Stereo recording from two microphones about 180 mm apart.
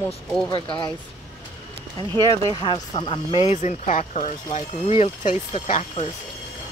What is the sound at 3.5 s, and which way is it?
Speech, 45° left (ahead or behind).